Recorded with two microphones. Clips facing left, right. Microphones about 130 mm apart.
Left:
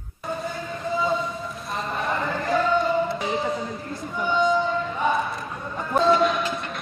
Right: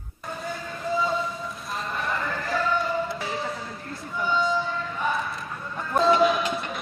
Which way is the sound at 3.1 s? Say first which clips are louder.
Left 5 dB; 20° left (ahead or behind).